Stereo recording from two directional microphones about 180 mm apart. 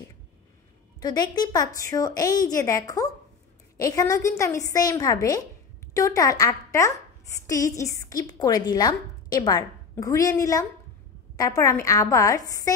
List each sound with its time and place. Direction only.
0.9 s a woman's voice: 20° left (ahead or behind)